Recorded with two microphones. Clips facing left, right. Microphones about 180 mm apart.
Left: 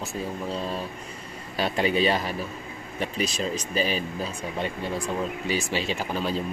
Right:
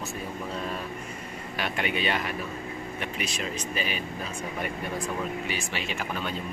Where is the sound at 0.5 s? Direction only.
30° left (ahead or behind).